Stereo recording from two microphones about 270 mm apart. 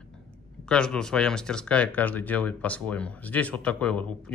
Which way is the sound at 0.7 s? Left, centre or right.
Centre.